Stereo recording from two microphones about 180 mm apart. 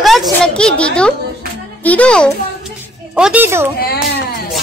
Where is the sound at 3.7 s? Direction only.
55° left (ahead or behind).